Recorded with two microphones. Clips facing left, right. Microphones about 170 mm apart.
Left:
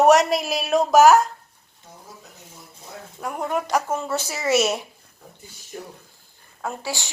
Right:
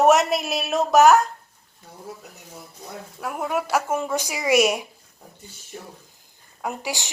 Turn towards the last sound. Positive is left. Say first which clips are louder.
# even
turn(degrees=-15)  # may be behind; listen again after turning